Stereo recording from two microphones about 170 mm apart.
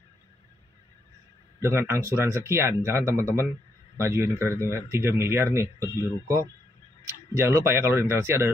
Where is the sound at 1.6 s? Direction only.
15° right (ahead or behind).